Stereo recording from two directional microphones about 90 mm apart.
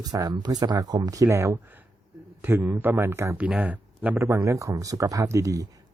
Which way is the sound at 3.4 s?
15° right (ahead or behind).